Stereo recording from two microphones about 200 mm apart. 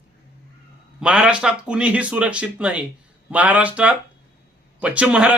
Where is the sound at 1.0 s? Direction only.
5° right (ahead or behind).